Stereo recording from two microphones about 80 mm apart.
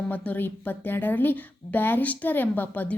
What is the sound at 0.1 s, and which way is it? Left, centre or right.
A woman's voice, left.